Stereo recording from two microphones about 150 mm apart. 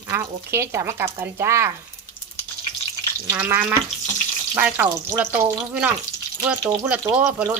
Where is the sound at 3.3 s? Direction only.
10° right (ahead or behind).